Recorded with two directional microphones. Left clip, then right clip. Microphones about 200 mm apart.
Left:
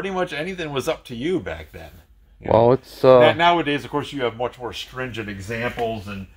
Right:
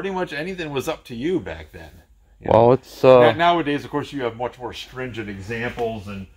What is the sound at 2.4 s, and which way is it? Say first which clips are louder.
A man's voice: right 1 dB; 15° right (ahead or behind).